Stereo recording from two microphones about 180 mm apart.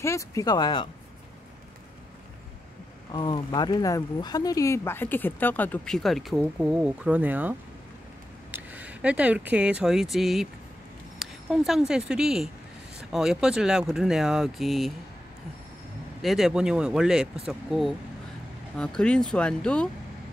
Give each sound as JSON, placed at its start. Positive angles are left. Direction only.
{"t": 0.0, "sound": "speech", "side_deg": 15}
{"t": 3.1, "sound": "speech", "side_deg": 25}
{"t": 11.1, "sound": "a sound", "side_deg": 0}
{"t": 11.9, "sound": "speech", "side_deg": -5}
{"t": 16.2, "sound": "speech", "side_deg": 0}